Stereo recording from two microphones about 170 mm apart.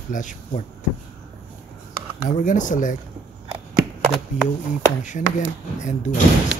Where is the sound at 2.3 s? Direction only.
50° left (ahead or behind).